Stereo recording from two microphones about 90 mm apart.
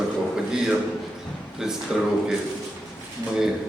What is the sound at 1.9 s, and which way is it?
Speech, 5° right (ahead or behind).